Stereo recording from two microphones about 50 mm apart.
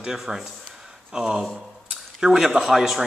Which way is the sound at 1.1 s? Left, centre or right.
Centre.